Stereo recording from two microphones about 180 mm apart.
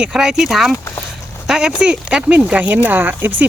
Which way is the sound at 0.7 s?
15° left (ahead or behind).